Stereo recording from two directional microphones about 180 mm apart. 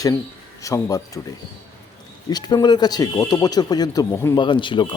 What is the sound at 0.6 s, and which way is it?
Speech, 20° left (ahead or behind).